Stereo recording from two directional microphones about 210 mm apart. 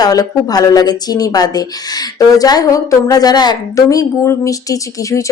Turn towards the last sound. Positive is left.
turn(degrees=15)  # may be behind; listen again after turning